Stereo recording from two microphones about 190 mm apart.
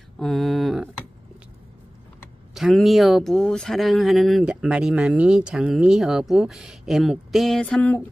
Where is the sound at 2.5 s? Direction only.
Centre (ahead or behind).